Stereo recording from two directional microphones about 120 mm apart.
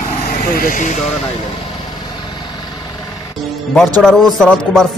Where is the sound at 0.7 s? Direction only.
90° left.